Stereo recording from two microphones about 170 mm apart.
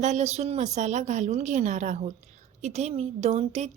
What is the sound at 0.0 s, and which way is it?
A woman's voice, 40° right (ahead or behind).